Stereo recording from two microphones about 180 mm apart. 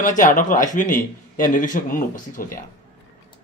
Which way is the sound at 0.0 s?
45° left (ahead or behind).